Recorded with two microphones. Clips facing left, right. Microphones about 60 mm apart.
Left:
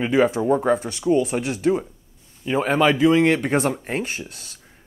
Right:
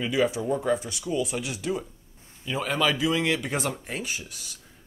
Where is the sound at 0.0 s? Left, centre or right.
Left.